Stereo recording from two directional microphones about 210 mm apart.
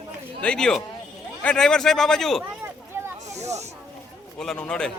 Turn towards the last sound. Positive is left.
turn(degrees=5)  # may be behind; listen again after turning